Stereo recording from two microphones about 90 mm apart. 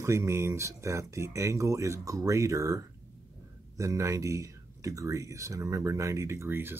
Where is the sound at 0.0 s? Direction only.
30° right (ahead or behind).